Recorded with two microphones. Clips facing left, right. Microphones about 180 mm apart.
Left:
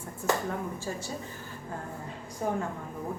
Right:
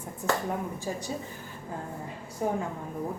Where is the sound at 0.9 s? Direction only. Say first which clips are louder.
Right 3 dB; 15° right (ahead or behind).